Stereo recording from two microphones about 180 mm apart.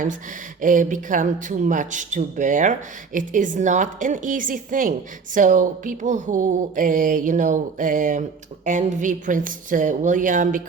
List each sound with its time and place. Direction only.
0.6 s speech: 45° right (ahead or behind)